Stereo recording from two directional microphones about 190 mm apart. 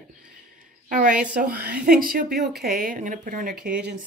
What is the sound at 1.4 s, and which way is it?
A woman's voice, 55° right (ahead or behind).